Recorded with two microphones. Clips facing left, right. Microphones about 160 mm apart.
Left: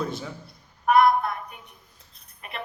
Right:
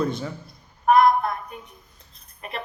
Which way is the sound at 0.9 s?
40° right (ahead or behind).